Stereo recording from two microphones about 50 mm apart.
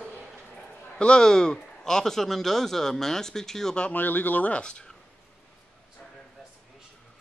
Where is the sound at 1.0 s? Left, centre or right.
Centre.